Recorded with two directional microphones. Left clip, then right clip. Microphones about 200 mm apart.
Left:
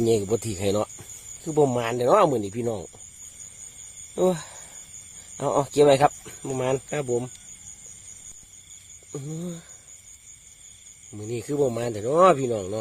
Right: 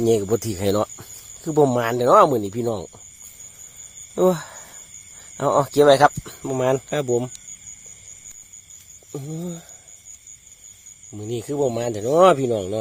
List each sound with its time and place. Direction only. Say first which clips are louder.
0.0 s speech: right 3 dB; 25° right (ahead or behind)
4.1 s speech: right 4 dB; 25° right (ahead or behind)
9.1 s speech: right 3 dB; 20° right (ahead or behind)
11.1 s speech: right 2 dB; 25° right (ahead or behind)